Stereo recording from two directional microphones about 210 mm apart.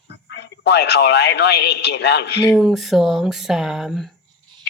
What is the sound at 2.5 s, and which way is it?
Speech, centre (ahead or behind).